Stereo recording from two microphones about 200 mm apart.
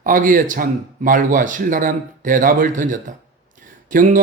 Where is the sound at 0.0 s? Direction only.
45° right (ahead or behind).